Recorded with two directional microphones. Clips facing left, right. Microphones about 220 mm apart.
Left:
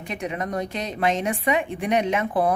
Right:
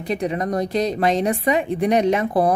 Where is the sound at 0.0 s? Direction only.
35° right (ahead or behind).